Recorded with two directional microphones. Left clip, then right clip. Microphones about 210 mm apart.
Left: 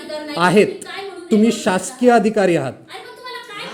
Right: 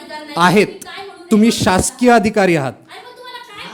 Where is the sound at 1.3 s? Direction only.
35° right (ahead or behind).